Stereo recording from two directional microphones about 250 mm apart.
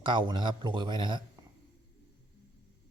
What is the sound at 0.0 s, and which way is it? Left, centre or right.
Speech, centre.